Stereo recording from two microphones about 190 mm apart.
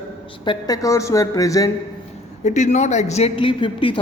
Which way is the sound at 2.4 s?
40° left (ahead or behind).